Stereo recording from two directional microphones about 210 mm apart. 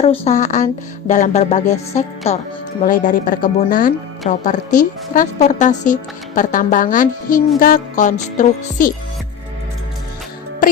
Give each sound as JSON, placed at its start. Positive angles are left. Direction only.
{"t": 0.0, "sound": "a woman's voice", "side_deg": 30}
{"t": 2.8, "sound": "a woman's voice", "side_deg": 40}